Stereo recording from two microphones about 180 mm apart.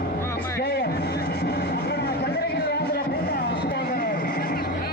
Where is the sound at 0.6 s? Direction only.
60° left (ahead or behind).